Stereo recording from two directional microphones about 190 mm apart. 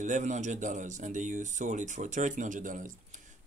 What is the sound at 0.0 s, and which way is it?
Speech, 40° right (ahead or behind).